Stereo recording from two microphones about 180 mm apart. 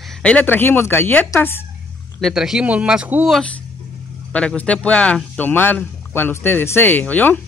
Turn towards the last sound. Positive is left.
turn(degrees=10)  # may be behind; listen again after turning